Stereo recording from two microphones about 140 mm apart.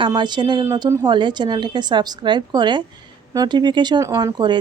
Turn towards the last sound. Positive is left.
turn(degrees=-30)  # may be behind; listen again after turning